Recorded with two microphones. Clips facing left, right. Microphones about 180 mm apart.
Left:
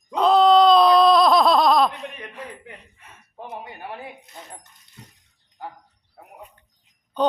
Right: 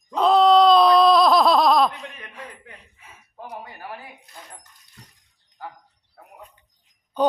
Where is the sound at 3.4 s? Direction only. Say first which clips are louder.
Left 1 dB; 20° left (ahead or behind).